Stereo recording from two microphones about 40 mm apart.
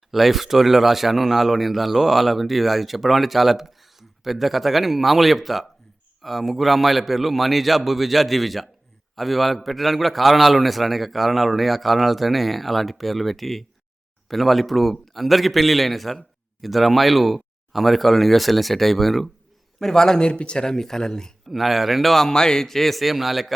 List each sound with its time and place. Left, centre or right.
0.1 s a man's voice: centre
19.8 s speech: centre
20.2 s speech: left
21.5 s a man's voice: centre